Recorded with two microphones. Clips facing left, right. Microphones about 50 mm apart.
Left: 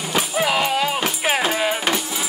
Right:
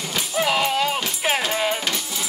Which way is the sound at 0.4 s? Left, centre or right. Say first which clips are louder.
Even; centre.